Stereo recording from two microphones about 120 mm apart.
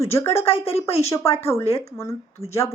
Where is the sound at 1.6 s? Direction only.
55° left (ahead or behind).